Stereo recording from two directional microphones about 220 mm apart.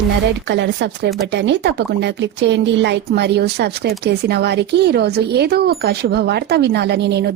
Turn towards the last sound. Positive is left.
turn(degrees=-50)  # may be behind; listen again after turning